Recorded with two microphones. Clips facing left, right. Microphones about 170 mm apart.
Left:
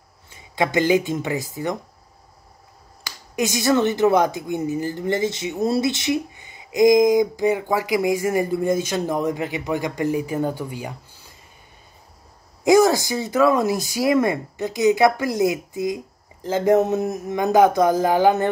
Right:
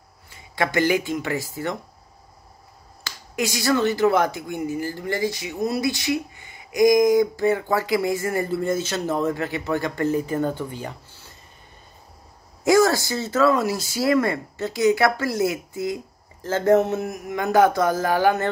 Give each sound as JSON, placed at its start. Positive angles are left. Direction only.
{"t": 0.3, "sound": "speech", "side_deg": 20}
{"t": 3.0, "sound": "speech", "side_deg": 20}
{"t": 12.6, "sound": "speech", "side_deg": 20}